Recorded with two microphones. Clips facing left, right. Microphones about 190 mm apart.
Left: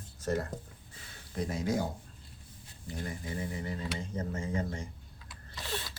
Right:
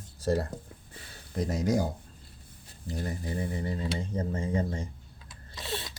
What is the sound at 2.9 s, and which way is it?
Speech, 35° right (ahead or behind).